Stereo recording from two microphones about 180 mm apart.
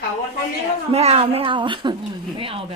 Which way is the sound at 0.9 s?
35° right (ahead or behind).